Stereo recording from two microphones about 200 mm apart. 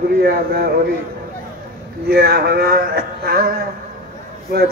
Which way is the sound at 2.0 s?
50° right (ahead or behind).